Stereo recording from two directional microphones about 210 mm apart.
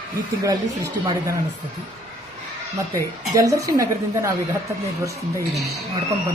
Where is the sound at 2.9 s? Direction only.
15° right (ahead or behind).